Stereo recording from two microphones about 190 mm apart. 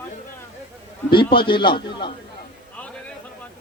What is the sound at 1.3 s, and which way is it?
Speech, 25° left (ahead or behind).